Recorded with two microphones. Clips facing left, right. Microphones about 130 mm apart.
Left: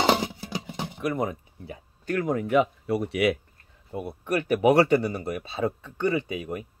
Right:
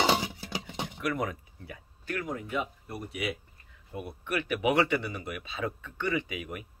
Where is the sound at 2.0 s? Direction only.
50° left (ahead or behind); by 3.3 s 70° left (ahead or behind).